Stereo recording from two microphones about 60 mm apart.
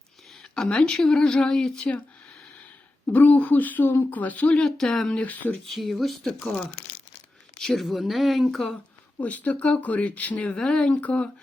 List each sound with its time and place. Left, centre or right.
0.5 s speech: centre
3.1 s speech: left
4.5 s speech: centre
5.2 s speech: left
5.6 s speech: centre
7.8 s speech: centre
9.2 s speech: left